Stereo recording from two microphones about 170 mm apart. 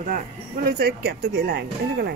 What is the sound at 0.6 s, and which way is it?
Speech, 70° right (ahead or behind).